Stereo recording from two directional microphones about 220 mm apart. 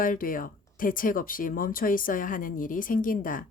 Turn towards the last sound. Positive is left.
turn(degrees=40)  # may be behind; listen again after turning